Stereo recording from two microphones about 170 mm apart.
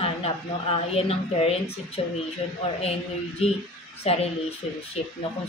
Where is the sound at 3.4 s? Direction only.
35° left (ahead or behind).